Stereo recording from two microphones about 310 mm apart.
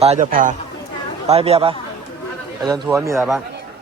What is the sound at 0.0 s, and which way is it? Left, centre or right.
A man's voice, right.